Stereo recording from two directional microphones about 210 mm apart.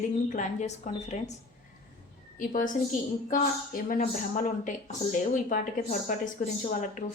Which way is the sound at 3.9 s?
40° left (ahead or behind).